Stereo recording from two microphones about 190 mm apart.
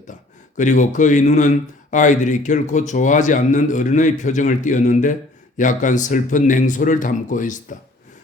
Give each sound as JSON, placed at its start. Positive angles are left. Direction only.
{"t": 0.1, "sound": "speech", "side_deg": 40}